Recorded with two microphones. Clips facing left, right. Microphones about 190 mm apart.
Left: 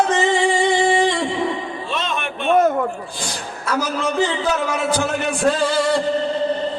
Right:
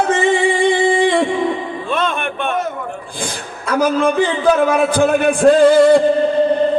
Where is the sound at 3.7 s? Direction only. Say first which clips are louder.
Right 7 dB; 55° right (ahead or behind).